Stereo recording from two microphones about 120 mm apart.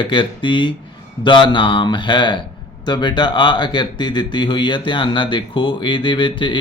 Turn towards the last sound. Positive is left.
turn(degrees=45)  # may be behind; listen again after turning